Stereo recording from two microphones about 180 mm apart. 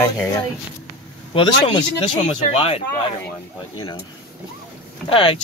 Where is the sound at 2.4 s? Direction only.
35° left (ahead or behind).